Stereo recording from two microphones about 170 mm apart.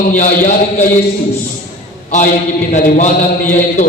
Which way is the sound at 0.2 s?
55° left (ahead or behind).